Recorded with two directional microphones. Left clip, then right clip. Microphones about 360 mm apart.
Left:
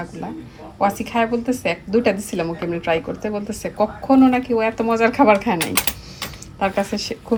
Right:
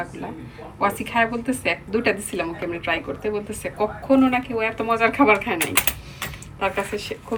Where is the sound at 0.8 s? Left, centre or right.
Centre.